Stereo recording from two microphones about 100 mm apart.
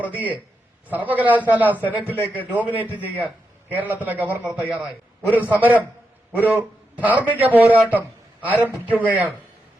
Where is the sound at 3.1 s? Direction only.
15° right (ahead or behind).